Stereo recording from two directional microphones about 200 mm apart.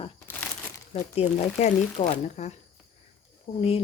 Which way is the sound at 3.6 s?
30° left (ahead or behind).